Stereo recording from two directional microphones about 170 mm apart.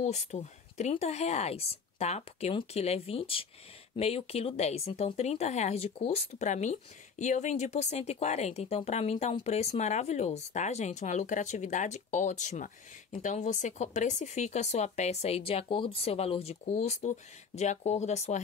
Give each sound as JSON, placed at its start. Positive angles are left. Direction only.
{"t": 0.0, "sound": "speech", "side_deg": 40}